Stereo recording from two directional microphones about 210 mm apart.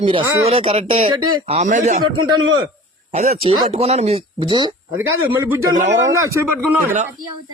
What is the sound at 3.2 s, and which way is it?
Speech, 35° right (ahead or behind).